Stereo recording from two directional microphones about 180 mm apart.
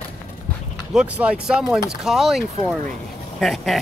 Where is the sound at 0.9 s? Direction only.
5° right (ahead or behind).